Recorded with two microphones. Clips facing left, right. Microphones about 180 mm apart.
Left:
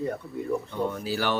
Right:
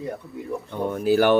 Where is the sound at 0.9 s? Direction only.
55° right (ahead or behind).